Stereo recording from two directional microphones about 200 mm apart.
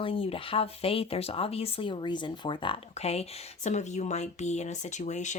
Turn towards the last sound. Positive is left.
turn(degrees=35)  # may be behind; listen again after turning